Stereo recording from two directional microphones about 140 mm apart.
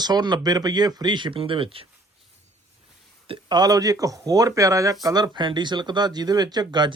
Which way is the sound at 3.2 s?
35° right (ahead or behind).